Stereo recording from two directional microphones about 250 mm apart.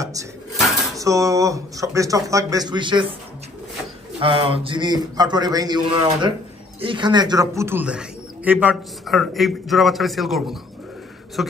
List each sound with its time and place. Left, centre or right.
0.0 s speech: centre
4.2 s speech: right; by 11.5 s centre